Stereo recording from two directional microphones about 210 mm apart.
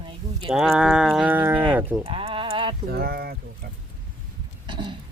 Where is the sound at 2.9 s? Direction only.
50° right (ahead or behind).